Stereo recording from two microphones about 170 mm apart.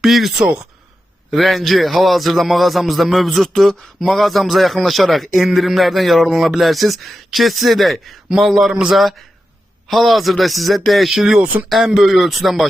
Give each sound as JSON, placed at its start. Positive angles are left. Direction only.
{"t": 0.0, "sound": "a man's voice", "side_deg": 0}